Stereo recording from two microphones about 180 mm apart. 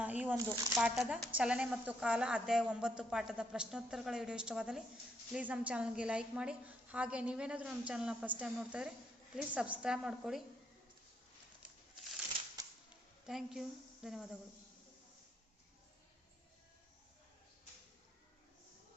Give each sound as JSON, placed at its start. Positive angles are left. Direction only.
{"t": 0.0, "sound": "a sound", "side_deg": -10}
{"t": 0.4, "sound": "a woman's voice", "side_deg": -5}
{"t": 12.6, "sound": "typewriter", "side_deg": -20}
{"t": 13.2, "sound": "speech", "side_deg": 0}